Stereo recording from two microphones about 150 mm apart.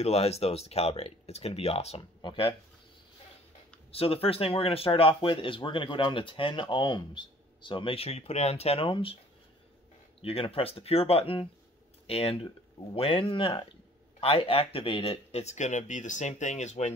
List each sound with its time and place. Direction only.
0.0 s speech: 45° left (ahead or behind)
3.9 s speech: 40° left (ahead or behind)
10.2 s speech: 40° left (ahead or behind)